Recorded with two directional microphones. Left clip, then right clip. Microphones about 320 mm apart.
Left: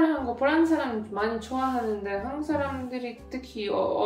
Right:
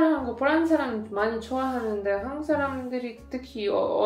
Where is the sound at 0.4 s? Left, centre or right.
Centre.